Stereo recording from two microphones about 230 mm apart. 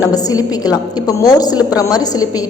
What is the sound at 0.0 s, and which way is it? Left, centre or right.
A woman's voice, centre.